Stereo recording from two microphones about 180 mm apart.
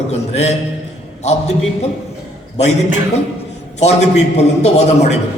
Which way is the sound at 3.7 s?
40° left (ahead or behind).